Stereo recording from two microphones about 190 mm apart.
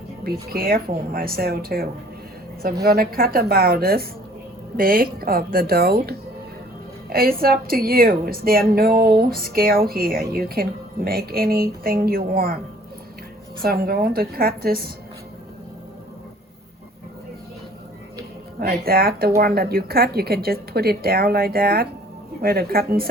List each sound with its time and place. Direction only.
0.3 s a woman's voice: 55° right (ahead or behind)
13.6 s a woman's voice: 55° right (ahead or behind)
18.6 s a woman's voice: 55° right (ahead or behind)